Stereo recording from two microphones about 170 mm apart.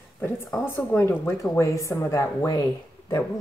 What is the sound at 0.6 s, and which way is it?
Speech, 10° left (ahead or behind).